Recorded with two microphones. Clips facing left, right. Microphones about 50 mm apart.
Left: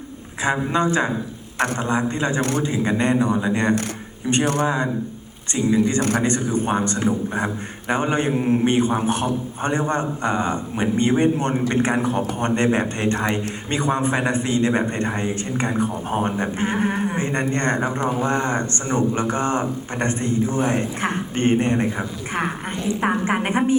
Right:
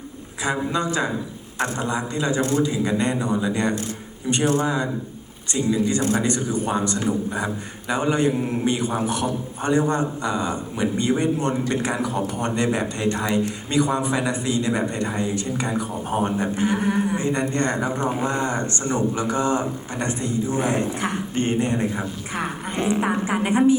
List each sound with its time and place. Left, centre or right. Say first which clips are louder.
0.7 s a man's voice: left 3 dB; left
2.4 s a man's voice: right 4 dB; left
2.6 s a man's voice: left 2 dB; left
22.7 s a woman's voice: right 2 dB; right
23.0 s a man's voice: left 1 dB; left